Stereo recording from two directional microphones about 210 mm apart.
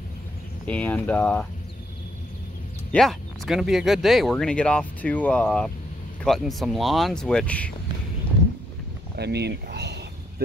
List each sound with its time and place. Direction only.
0.7 s speech: 5° left (ahead or behind)
2.9 s speech: centre (ahead or behind)
9.1 s speech: 50° right (ahead or behind)